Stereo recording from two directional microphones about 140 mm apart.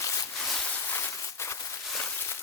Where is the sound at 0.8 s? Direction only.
20° left (ahead or behind).